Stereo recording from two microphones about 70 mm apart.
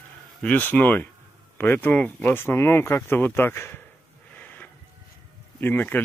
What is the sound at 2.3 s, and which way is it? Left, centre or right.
Speech, left.